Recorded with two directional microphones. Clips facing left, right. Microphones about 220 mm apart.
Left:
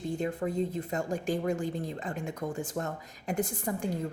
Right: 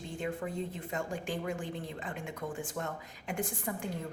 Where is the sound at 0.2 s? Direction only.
40° left (ahead or behind).